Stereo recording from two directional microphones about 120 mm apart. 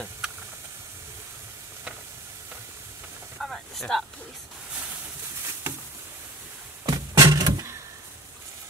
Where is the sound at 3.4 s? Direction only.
Centre (ahead or behind).